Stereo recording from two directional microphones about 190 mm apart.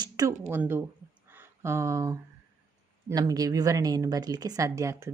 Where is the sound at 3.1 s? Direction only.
20° right (ahead or behind).